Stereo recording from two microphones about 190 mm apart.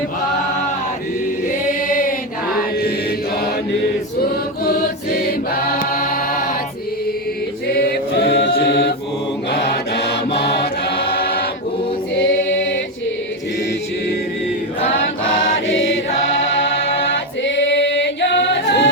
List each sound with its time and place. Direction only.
1.9 s chant: 45° left (ahead or behind)
4.2 s choir: 50° left (ahead or behind)
7.7 s chant: 55° left (ahead or behind)
9.5 s mantra: 60° left (ahead or behind)
12.5 s a sound: 80° left
15.6 s chant: 75° left (ahead or behind)
17.4 s a capella: 70° left (ahead or behind)